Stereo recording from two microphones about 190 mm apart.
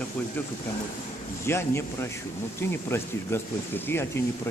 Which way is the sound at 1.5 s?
15° left (ahead or behind).